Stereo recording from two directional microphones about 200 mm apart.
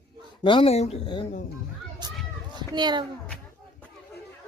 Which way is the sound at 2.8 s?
20° right (ahead or behind).